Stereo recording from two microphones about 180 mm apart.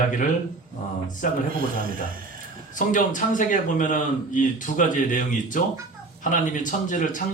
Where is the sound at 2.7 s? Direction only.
45° left (ahead or behind).